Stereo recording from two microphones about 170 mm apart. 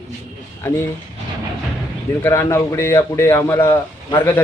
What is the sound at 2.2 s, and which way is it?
A man's voice, 15° left (ahead or behind).